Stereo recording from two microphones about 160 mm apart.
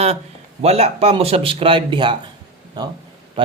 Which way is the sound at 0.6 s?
40° right (ahead or behind).